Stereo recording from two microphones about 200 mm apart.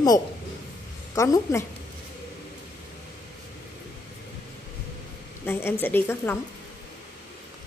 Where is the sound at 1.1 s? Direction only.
15° left (ahead or behind).